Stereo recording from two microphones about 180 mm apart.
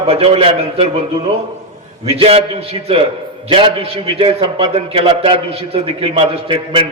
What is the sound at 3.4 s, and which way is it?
A man's voice, 30° right (ahead or behind).